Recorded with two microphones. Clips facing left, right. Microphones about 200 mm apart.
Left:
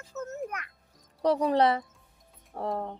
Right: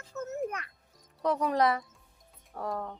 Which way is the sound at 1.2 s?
35° left (ahead or behind).